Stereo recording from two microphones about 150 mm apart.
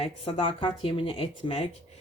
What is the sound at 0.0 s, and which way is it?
Speech, 35° left (ahead or behind).